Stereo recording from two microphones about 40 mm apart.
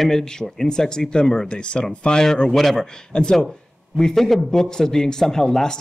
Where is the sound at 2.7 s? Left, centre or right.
Centre.